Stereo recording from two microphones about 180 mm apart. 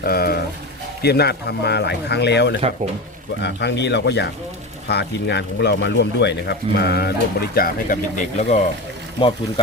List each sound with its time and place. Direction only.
0.0 s speech: 60° left (ahead or behind)
7.5 s speech: 50° left (ahead or behind)